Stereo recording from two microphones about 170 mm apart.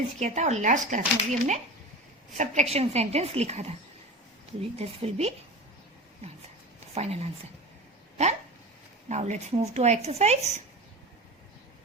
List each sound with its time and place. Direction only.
0.2 s speech: 45° right (ahead or behind)
4.8 s speech: 35° right (ahead or behind)
6.7 s a sound: 40° right (ahead or behind)
9.0 s speech: 40° right (ahead or behind)